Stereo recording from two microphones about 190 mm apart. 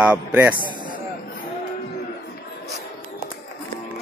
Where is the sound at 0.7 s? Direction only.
25° right (ahead or behind).